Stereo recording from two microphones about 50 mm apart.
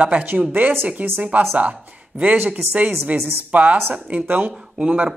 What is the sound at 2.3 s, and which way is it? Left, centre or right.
Speech, right.